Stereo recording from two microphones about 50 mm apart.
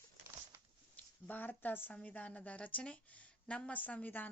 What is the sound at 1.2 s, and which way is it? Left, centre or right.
Speech, left.